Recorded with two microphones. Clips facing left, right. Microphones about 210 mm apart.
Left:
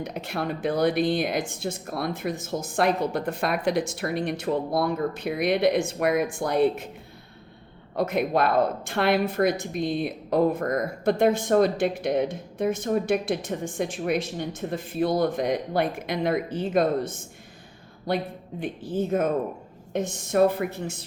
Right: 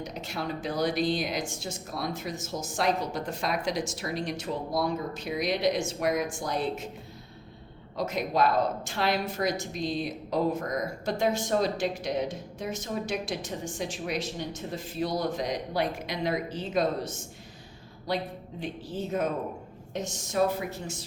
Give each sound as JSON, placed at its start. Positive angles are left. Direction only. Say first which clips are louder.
{"t": 0.0, "sound": "a woman's voice", "louder": "left 5 dB", "side_deg": 55}
{"t": 7.9, "sound": "a woman's voice", "louder": "left 4 dB", "side_deg": 60}